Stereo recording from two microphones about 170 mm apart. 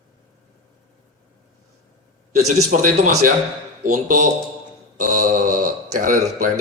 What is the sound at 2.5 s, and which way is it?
Speech, 45° right (ahead or behind).